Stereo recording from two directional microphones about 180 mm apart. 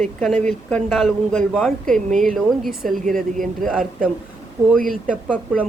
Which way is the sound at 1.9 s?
45° right (ahead or behind).